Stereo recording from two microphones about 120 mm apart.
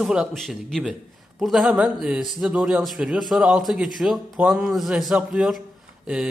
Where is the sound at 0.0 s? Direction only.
5° right (ahead or behind).